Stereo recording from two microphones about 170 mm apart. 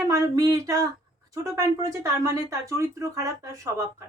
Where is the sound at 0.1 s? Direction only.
20° right (ahead or behind).